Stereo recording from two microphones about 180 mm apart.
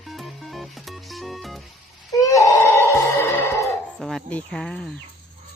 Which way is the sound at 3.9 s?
Centre (ahead or behind).